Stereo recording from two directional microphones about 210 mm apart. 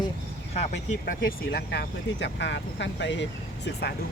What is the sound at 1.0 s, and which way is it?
Speech, 50° left (ahead or behind).